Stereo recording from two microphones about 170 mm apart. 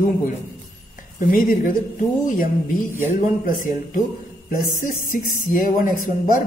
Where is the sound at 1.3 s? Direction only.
55° left (ahead or behind).